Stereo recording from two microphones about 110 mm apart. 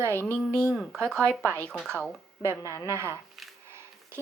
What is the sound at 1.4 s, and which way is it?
A woman's voice, 25° right (ahead or behind).